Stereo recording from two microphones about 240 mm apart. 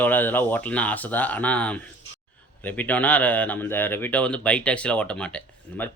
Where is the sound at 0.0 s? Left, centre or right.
Centre.